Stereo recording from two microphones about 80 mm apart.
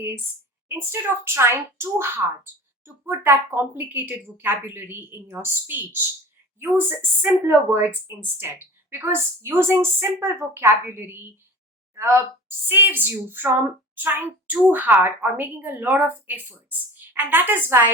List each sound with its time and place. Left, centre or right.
0.9 s a woman's voice: right
7.2 s a woman's voice: right